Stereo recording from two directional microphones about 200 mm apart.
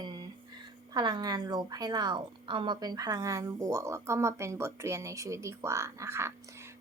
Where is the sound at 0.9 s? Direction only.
20° right (ahead or behind).